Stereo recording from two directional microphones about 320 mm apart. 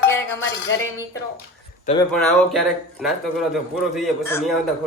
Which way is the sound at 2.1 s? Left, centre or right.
Centre.